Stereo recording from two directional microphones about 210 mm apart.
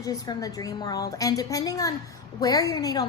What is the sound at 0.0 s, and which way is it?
Speech, 15° left (ahead or behind).